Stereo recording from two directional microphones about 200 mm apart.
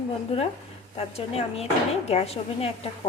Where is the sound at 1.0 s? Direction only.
30° left (ahead or behind).